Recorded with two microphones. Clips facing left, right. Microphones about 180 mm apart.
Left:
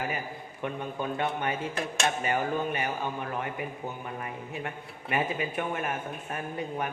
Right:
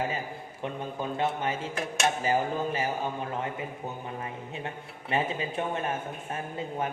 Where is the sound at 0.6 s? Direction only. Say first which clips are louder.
Left 1 dB; 25° right (ahead or behind).